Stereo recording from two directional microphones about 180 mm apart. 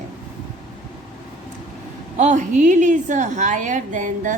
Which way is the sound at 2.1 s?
45° right (ahead or behind).